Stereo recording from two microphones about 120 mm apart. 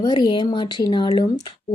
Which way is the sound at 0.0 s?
35° left (ahead or behind).